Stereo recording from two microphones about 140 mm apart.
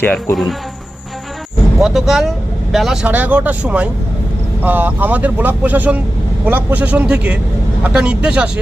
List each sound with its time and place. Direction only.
0.0 s speech: 15° left (ahead or behind)
1.8 s speech: centre (ahead or behind)